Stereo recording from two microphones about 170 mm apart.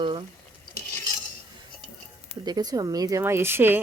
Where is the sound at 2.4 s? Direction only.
25° right (ahead or behind).